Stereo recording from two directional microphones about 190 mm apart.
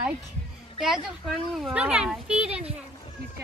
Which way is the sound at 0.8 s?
Centre (ahead or behind).